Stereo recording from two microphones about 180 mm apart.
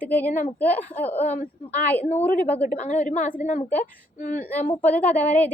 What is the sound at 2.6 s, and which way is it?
Speech, 40° left (ahead or behind).